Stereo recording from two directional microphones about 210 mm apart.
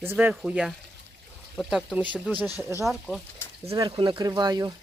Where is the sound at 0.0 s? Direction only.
10° right (ahead or behind).